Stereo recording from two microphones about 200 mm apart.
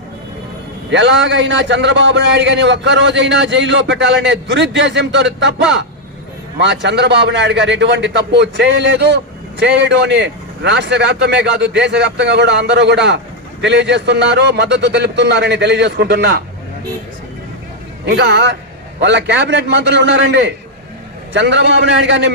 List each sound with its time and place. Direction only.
0.9 s a man's voice: 65° right (ahead or behind)
18.0 s a man's voice: 60° right (ahead or behind)